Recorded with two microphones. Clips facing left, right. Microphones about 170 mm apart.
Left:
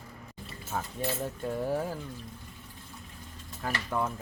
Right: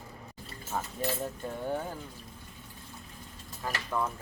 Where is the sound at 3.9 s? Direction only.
25° left (ahead or behind).